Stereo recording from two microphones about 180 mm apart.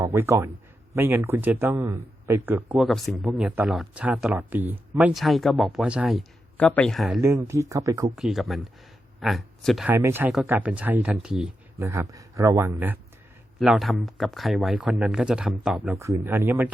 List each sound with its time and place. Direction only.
0.0 s speech: 15° right (ahead or behind)
7.2 s speech: 15° right (ahead or behind)
8.1 s speech: centre (ahead or behind)
11.8 s speech: 15° right (ahead or behind)
13.6 s speech: centre (ahead or behind)